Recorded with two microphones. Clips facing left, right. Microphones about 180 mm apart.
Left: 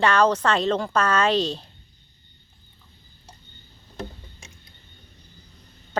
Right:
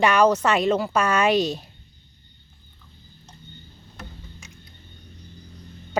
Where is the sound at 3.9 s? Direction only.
30° left (ahead or behind).